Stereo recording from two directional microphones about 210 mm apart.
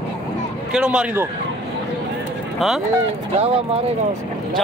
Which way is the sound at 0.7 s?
5° right (ahead or behind).